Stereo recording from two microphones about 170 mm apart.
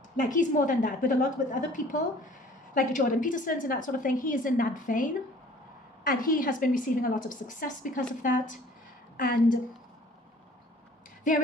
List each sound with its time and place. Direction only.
0.2 s a woman's voice: 50° left (ahead or behind)